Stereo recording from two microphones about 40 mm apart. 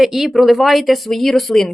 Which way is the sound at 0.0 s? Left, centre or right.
Centre.